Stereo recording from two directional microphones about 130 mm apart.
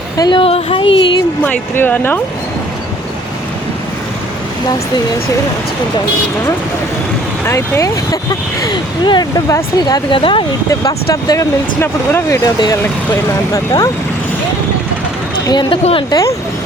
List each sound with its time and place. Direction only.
0.2 s speech: 40° left (ahead or behind)
1.5 s speech: 15° left (ahead or behind)
7.4 s speech: 25° left (ahead or behind)
8.6 s speech: 35° left (ahead or behind)
10.7 s speech: 25° left (ahead or behind)
12.5 s speech: 30° left (ahead or behind)
15.4 s speech: 35° left (ahead or behind)
15.8 s speech: 50° left (ahead or behind)
16.0 s speech: 25° left (ahead or behind)